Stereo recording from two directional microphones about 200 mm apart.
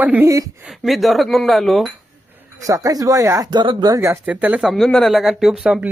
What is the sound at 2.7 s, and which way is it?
Speech, 15° right (ahead or behind).